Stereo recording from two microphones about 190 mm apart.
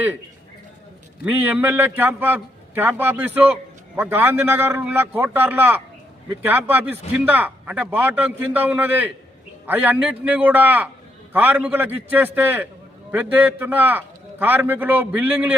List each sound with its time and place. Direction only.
1.2 s speech: 10° right (ahead or behind)